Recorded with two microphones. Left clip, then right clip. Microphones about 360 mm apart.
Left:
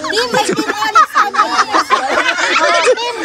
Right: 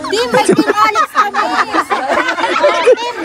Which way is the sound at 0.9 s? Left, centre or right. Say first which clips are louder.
Left 2 dB; right.